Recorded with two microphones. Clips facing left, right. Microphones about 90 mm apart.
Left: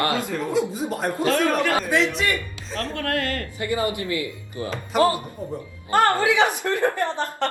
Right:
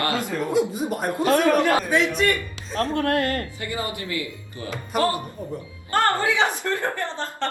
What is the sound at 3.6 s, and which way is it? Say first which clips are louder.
Speech: left 5 dB; 25° left (ahead or behind).